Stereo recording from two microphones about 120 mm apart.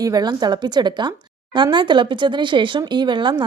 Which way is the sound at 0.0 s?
35° right (ahead or behind).